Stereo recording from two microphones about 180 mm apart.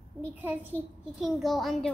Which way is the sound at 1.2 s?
Centre (ahead or behind).